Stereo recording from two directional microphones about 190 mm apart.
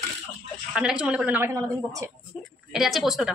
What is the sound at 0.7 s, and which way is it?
A woman's voice, 5° right (ahead or behind).